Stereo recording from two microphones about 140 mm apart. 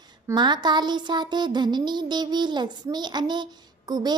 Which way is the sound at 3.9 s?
30° right (ahead or behind).